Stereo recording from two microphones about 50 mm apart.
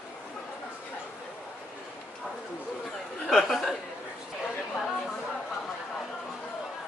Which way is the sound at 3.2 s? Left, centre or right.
Centre.